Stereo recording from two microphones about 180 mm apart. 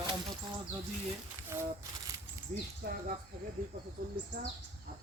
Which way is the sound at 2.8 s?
60° right (ahead or behind).